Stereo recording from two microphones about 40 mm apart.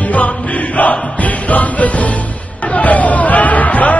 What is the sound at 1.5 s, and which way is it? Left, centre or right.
Music, left.